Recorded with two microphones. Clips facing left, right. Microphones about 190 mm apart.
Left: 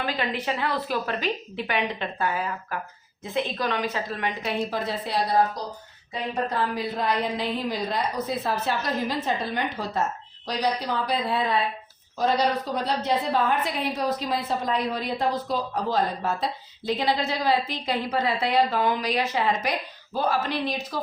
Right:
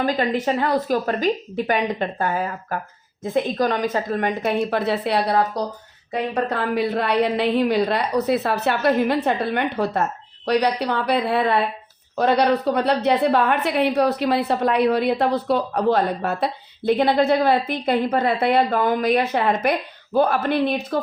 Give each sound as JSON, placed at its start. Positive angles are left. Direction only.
{"t": 0.0, "sound": "a woman's voice", "side_deg": -45}